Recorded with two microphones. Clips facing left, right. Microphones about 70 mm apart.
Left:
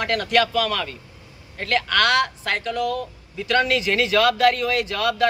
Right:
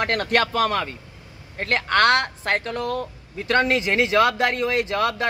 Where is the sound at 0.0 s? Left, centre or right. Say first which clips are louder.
Left 1 dB; right.